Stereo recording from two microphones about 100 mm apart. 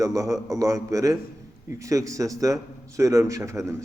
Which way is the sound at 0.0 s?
30° right (ahead or behind).